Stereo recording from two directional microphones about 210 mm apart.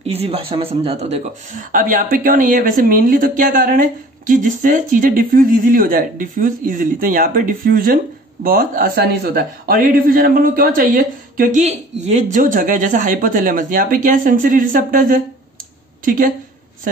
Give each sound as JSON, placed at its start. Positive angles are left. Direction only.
{"t": 0.0, "sound": "a man's voice", "side_deg": -30}